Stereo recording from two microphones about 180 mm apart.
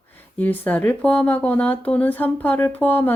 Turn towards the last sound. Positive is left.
turn(degrees=10)  # may be behind; listen again after turning